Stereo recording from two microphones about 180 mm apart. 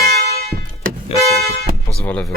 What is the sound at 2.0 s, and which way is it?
Speech, 5° left (ahead or behind).